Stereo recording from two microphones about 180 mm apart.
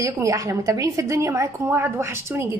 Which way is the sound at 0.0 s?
20° right (ahead or behind).